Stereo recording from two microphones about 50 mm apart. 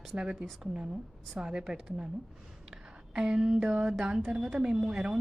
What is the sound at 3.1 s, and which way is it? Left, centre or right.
A woman's voice, centre.